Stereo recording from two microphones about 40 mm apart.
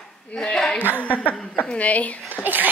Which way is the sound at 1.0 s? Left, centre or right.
Left.